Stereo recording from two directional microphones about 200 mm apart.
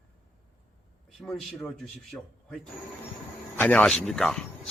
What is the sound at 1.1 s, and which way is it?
Speech, centre (ahead or behind).